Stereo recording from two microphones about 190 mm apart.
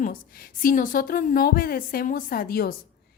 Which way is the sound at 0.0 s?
50° left (ahead or behind).